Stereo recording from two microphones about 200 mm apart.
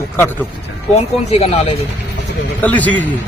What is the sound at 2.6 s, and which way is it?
Speech, 10° left (ahead or behind).